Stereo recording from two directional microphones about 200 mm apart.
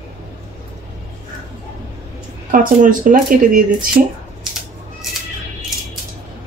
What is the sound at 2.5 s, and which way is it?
Speech, 40° right (ahead or behind).